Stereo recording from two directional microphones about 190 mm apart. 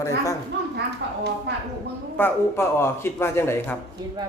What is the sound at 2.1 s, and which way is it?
A man's voice, 10° left (ahead or behind).